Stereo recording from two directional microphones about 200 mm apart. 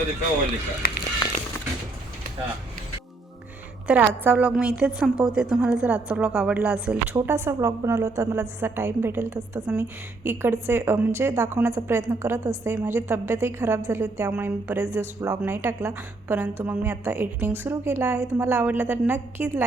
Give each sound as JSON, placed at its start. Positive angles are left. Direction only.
{"t": 0.8, "sound": "speech", "side_deg": 45}
{"t": 3.8, "sound": "a woman's voice", "side_deg": -5}